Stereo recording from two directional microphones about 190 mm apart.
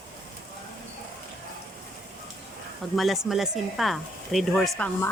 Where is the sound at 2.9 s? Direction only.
Centre (ahead or behind).